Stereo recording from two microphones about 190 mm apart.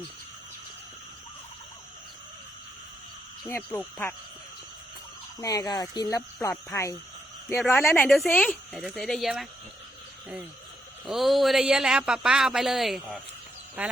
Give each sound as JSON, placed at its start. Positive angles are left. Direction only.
{"t": 3.4, "sound": "speech", "side_deg": 10}
{"t": 5.4, "sound": "speech", "side_deg": 20}
{"t": 11.0, "sound": "speech", "side_deg": 0}
{"t": 13.8, "sound": "quack", "side_deg": -5}